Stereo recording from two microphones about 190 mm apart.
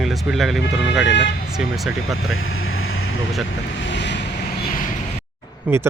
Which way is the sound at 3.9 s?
65° left (ahead or behind).